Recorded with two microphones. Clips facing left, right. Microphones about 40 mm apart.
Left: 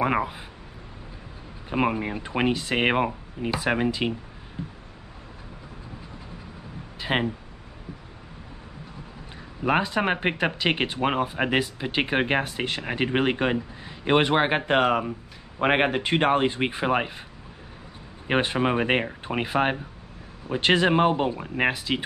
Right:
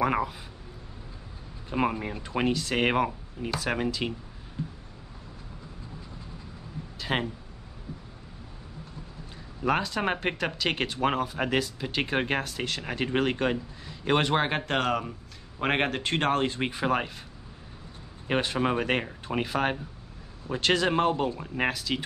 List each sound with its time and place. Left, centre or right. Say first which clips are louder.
0.0 s speech: left 2 dB; left
1.7 s speech: left 3 dB; left
4.6 s a sound: even; centre
7.0 s a sound: left 4 dB; left
9.6 s speech: left 4 dB; left
18.2 s speech: left 3 dB; left